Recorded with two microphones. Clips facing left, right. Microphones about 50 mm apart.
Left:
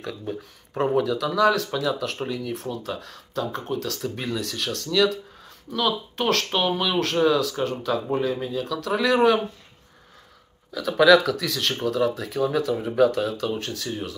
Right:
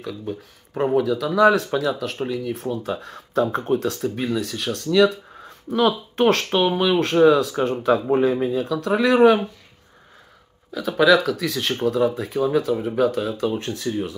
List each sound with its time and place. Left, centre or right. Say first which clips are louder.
0.0 s speech: right 2 dB; centre; by 4.0 s right
4.0 s speech: right 5 dB; centre
10.7 s speech: even; centre